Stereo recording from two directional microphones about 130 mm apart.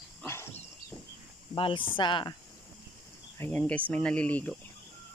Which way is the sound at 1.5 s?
40° left (ahead or behind).